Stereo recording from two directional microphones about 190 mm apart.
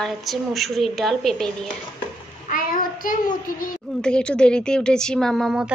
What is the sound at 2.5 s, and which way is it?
Child singing, 45° left (ahead or behind).